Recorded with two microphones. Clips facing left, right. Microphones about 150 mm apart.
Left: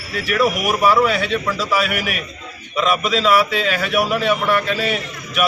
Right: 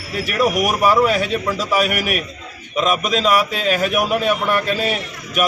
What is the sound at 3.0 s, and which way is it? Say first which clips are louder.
Speech: left 1 dB; 45° right (ahead or behind).